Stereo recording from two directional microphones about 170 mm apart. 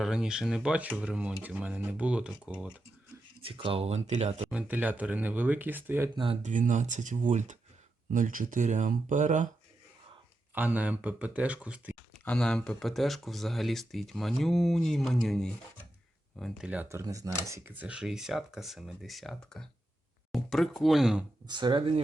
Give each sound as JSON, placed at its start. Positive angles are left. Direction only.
{"t": 0.0, "sound": "speech", "side_deg": -5}
{"t": 3.4, "sound": "speech", "side_deg": -30}
{"t": 4.4, "sound": "speech", "side_deg": -10}
{"t": 6.1, "sound": "speech", "side_deg": -30}
{"t": 6.4, "sound": "speech", "side_deg": -50}
{"t": 10.5, "sound": "speech", "side_deg": -10}
{"t": 12.2, "sound": "speech", "side_deg": 5}
{"t": 21.4, "sound": "speech", "side_deg": -25}